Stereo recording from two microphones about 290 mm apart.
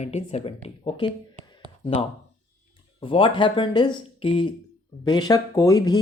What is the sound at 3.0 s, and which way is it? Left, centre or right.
Speech, centre.